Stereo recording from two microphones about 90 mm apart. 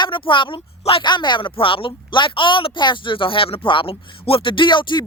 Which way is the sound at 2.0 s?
65° left (ahead or behind).